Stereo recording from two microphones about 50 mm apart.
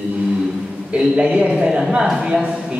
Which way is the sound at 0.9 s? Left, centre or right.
Right.